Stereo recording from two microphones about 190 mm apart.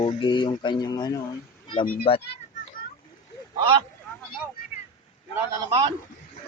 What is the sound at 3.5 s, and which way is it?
Speech, 25° right (ahead or behind).